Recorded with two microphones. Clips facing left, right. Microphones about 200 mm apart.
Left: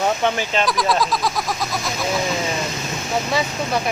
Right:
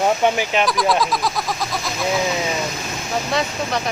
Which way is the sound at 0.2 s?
15° right (ahead or behind).